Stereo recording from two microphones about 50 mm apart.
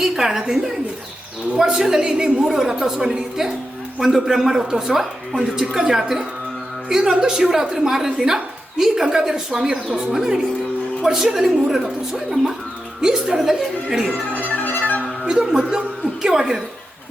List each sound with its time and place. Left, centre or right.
0.0 s a woman's voice: centre
14.5 s music: left
15.2 s a woman's voice: centre